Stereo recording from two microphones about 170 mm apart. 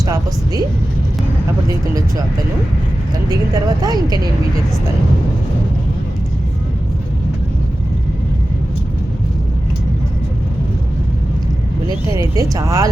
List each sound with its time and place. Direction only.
0.0 s a woman's voice: 20° right (ahead or behind)
3.2 s speech: 25° right (ahead or behind)
12.1 s speech: 20° right (ahead or behind)